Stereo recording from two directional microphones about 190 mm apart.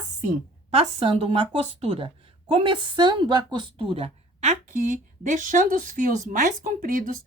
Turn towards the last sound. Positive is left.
turn(degrees=-45)  # may be behind; listen again after turning